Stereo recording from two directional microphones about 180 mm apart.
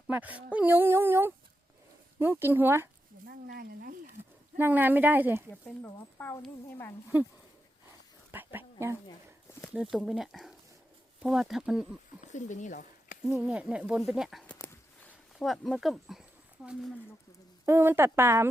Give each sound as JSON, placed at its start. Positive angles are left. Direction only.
{"t": 0.1, "sound": "speech", "side_deg": -10}
{"t": 3.2, "sound": "a sound", "side_deg": -55}
{"t": 4.5, "sound": "speech", "side_deg": -10}
{"t": 5.6, "sound": "speech", "side_deg": 10}
{"t": 7.1, "sound": "speech", "side_deg": -10}
{"t": 8.3, "sound": "a sound", "side_deg": -10}
{"t": 9.5, "sound": "a sound", "side_deg": 15}
{"t": 9.9, "sound": "speech", "side_deg": 0}
{"t": 12.2, "sound": "speech", "side_deg": 45}
{"t": 13.2, "sound": "speech", "side_deg": -5}
{"t": 14.6, "sound": "a sound", "side_deg": 10}
{"t": 17.7, "sound": "speech", "side_deg": -15}